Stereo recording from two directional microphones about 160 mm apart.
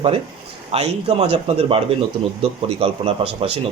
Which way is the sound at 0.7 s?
40° right (ahead or behind).